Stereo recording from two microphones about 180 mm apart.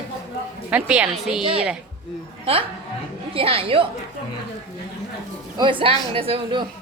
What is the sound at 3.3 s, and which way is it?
Speech, 30° right (ahead or behind).